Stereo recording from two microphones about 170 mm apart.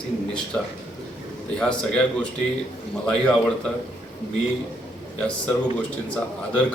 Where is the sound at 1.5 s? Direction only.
5° left (ahead or behind).